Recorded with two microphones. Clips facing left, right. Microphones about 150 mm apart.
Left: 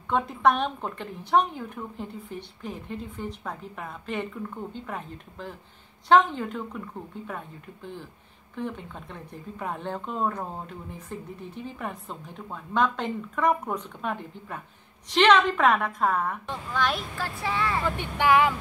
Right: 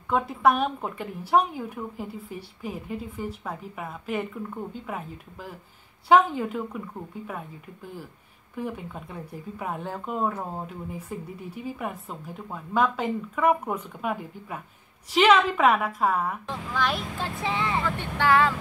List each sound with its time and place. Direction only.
0.1 s a woman's voice: 5° right (ahead or behind)
17.2 s speech: 20° right (ahead or behind)
17.8 s speech: 15° left (ahead or behind)